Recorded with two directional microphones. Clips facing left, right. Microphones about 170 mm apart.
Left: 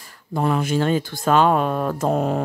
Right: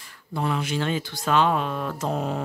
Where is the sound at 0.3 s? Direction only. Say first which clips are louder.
Left 6 dB; 45° left (ahead or behind).